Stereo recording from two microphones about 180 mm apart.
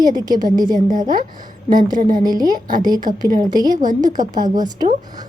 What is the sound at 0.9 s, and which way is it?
A woman's voice, 45° right (ahead or behind).